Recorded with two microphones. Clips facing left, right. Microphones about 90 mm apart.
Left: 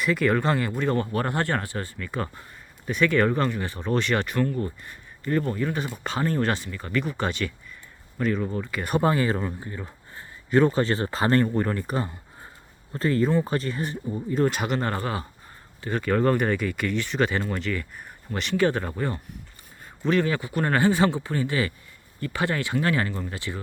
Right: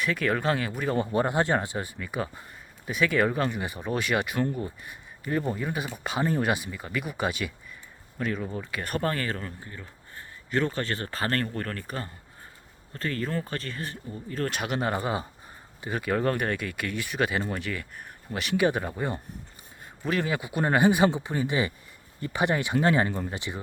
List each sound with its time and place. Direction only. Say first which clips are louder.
0.0 s speech: left 4 dB; centre (ahead or behind)
0.9 s speech: right 1 dB; 15° right (ahead or behind); by 9.0 s centre (ahead or behind)
9.0 s speech: left 7 dB; 15° left (ahead or behind)
14.5 s speech: left 2 dB; 5° right (ahead or behind); by 23.6 s 20° right (ahead or behind)